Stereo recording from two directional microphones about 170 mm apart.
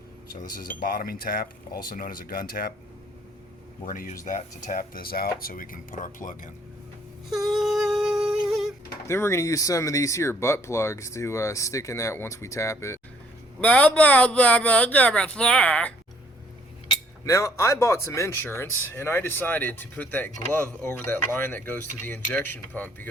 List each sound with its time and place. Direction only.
0.8 s speech: 55° left (ahead or behind)
3.8 s speech: 55° left (ahead or behind)
7.3 s humming: centre (ahead or behind)
9.0 s speech: 15° left (ahead or behind)
17.2 s speech: 20° left (ahead or behind)